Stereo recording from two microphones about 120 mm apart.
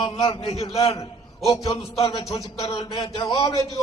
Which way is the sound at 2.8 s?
40° left (ahead or behind).